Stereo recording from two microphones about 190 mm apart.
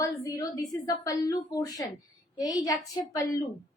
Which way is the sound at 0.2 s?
15° left (ahead or behind).